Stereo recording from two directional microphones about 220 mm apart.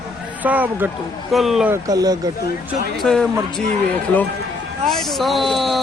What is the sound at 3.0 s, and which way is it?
Speech, 5° left (ahead or behind).